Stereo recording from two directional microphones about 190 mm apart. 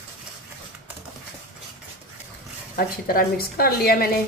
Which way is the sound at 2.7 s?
50° left (ahead or behind).